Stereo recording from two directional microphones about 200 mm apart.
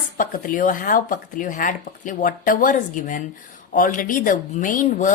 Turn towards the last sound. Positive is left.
turn(degrees=40)  # may be behind; listen again after turning